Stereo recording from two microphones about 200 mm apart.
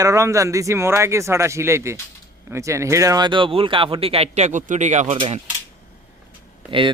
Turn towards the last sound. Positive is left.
turn(degrees=-25)  # may be behind; listen again after turning